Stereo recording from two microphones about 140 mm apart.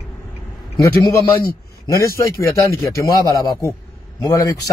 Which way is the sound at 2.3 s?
20° left (ahead or behind).